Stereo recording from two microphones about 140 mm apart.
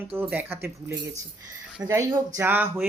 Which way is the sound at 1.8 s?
20° right (ahead or behind).